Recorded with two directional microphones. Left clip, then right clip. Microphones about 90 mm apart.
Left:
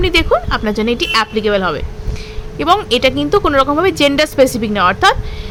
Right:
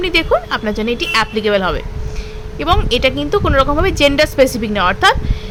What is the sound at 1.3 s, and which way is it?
Speech, 10° left (ahead or behind).